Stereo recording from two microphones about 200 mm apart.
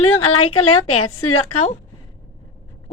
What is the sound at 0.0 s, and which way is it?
A woman's voice, 90° left.